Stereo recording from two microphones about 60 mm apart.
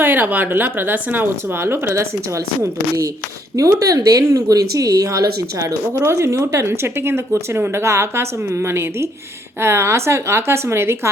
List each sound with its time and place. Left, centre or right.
0.0 s speech: right
3.5 s a woman's voice: right